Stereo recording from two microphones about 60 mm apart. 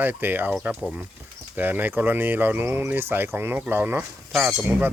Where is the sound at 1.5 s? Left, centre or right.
Right.